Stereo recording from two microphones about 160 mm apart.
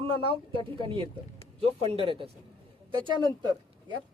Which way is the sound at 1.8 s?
35° right (ahead or behind).